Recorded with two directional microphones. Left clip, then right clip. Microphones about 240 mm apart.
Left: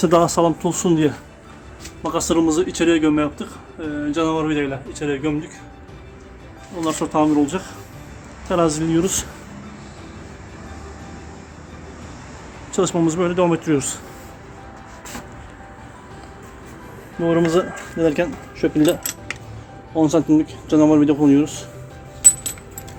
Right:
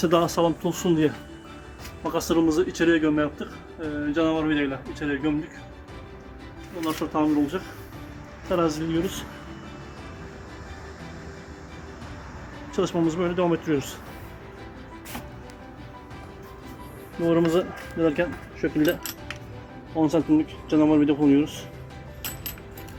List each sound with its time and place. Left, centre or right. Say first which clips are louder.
0.0 s speech: left 6 dB; centre
6.8 s speech: left 6 dB; centre
8.9 s speech: left 7 dB; left
12.7 s speech: left 6 dB; centre
17.2 s speech: left 4 dB; centre
21.4 s speech: left 5 dB; left